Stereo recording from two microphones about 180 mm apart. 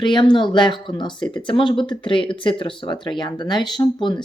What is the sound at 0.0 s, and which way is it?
Speech, 25° left (ahead or behind).